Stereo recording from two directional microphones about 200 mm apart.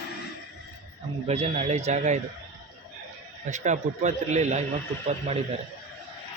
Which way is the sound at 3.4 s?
35° right (ahead or behind).